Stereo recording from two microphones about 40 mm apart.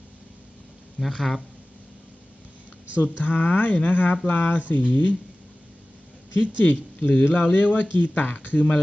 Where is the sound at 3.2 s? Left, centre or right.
Left.